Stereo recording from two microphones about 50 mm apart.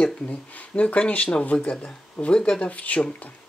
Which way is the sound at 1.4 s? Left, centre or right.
Left.